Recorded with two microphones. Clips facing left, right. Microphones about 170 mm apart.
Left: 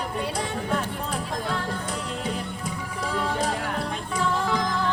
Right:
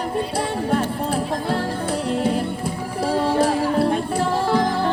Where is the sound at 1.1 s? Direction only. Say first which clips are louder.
Right 5 dB; 35° right (ahead or behind).